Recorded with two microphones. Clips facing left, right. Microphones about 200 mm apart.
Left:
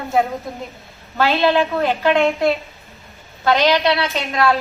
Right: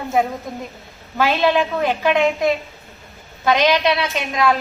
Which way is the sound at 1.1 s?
15° right (ahead or behind).